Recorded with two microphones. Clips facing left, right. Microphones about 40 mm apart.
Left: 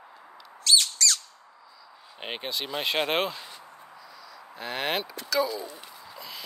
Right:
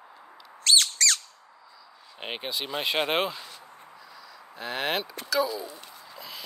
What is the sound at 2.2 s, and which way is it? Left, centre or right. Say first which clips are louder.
Speech: even; centre.